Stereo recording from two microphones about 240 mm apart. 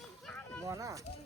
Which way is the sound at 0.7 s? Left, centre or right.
Centre.